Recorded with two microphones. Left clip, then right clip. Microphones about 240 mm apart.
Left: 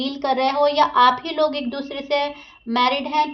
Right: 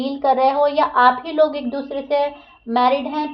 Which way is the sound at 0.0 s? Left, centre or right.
Left.